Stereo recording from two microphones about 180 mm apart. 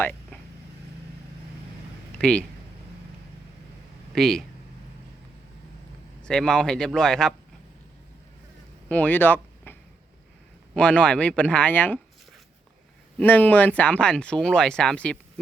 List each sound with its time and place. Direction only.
2.1 s a sound: 5° left (ahead or behind)
4.1 s speech: centre (ahead or behind)
6.2 s speech: 5° left (ahead or behind)
8.9 s speech: 10° left (ahead or behind)
10.8 s speech: 5° left (ahead or behind)
13.1 s speech: 10° left (ahead or behind)